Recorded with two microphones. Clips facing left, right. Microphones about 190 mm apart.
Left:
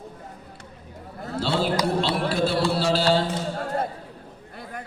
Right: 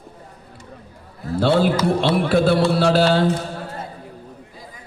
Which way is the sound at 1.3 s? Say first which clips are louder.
Right 7 dB; 55° right (ahead or behind).